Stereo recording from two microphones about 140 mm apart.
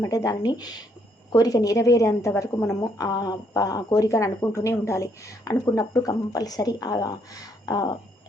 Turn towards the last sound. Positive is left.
turn(degrees=30)  # may be behind; listen again after turning